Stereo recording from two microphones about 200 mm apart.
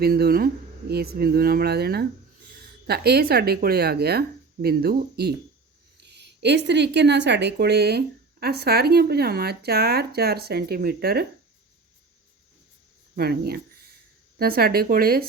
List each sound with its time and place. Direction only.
0.0 s speech: 50° right (ahead or behind)
13.1 s speech: 50° right (ahead or behind)